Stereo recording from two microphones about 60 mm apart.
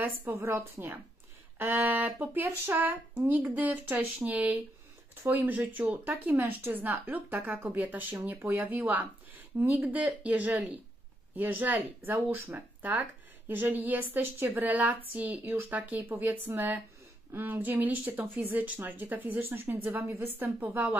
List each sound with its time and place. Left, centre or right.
0.0 s speech: right
15.4 s speech: right
15.7 s speech: right